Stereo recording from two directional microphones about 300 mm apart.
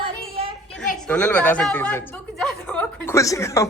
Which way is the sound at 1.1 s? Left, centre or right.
Centre.